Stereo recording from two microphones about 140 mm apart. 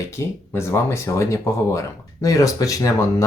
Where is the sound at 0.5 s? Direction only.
20° left (ahead or behind).